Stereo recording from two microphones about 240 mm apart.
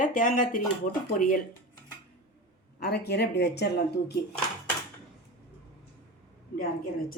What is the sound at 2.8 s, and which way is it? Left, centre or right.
Speech, left.